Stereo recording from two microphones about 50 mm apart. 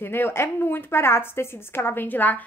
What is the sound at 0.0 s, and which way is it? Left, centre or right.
A woman's voice, left.